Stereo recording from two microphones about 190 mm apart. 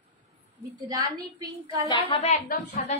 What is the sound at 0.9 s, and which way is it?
A woman's voice, 20° right (ahead or behind).